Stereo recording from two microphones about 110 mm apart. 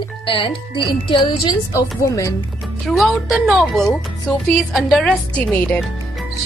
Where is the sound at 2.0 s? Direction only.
30° left (ahead or behind).